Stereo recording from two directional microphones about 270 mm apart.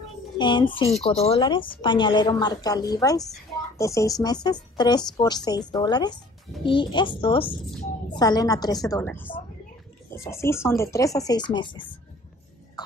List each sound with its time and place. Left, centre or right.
0.4 s a woman's voice: centre